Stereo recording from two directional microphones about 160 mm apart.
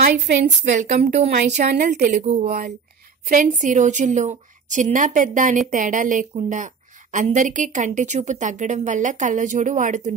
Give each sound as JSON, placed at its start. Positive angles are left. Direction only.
{"t": 0.0, "sound": "a woman's voice", "side_deg": -90}
{"t": 0.7, "sound": "a woman's voice", "side_deg": -45}
{"t": 1.3, "sound": "a woman's voice", "side_deg": -60}